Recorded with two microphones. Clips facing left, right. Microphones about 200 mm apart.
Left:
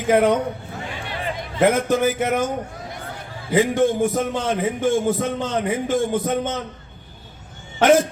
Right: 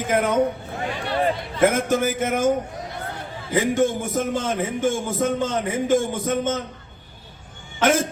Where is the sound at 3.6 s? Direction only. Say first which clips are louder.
Left 2 dB; 45° right (ahead or behind).